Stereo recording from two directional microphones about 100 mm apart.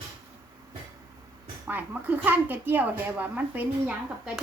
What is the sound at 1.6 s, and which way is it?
Speech, 15° right (ahead or behind).